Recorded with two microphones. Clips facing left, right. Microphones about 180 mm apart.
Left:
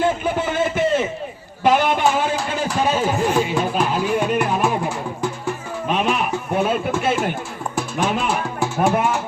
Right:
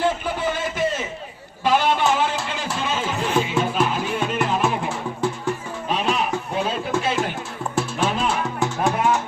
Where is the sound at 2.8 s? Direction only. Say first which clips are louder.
Left 6 dB; 40° left (ahead or behind).